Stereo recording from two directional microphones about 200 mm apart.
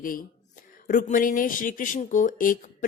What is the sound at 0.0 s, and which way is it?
A woman's voice, 45° left (ahead or behind).